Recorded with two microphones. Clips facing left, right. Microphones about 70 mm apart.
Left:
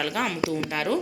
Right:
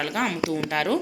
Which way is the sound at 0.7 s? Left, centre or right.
Right.